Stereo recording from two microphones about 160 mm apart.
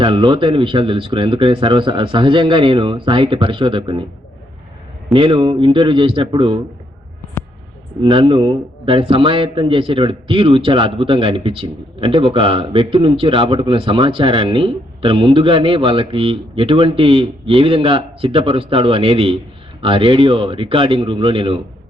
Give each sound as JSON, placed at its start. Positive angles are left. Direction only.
{"t": 0.0, "sound": "a man's voice", "side_deg": -30}
{"t": 5.1, "sound": "a man's voice", "side_deg": -35}
{"t": 8.0, "sound": "a man's voice", "side_deg": -30}